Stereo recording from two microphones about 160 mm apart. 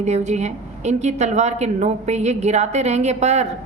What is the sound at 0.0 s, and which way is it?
A woman's voice, 45° right (ahead or behind).